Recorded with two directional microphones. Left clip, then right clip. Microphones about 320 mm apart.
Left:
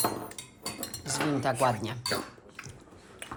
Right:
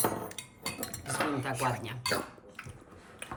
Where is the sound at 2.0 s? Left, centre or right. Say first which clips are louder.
Right 2 dB; centre.